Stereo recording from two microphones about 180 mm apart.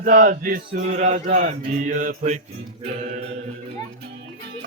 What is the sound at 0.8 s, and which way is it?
Mantra, 40° right (ahead or behind).